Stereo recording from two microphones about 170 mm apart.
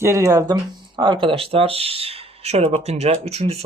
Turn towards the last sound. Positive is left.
turn(degrees=-35)  # may be behind; listen again after turning